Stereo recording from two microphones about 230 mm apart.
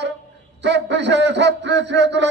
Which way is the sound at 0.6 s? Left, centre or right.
Right.